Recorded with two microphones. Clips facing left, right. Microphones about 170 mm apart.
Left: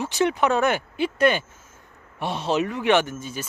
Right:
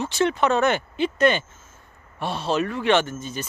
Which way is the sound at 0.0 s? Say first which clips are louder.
Even; 15° left (ahead or behind).